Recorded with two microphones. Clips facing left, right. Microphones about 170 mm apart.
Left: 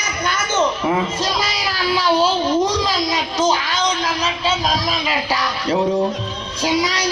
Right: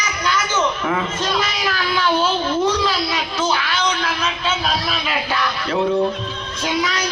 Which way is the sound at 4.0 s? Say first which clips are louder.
Left 2 dB; 35° left (ahead or behind).